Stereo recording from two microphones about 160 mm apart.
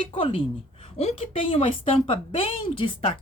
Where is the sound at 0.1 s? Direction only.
35° left (ahead or behind).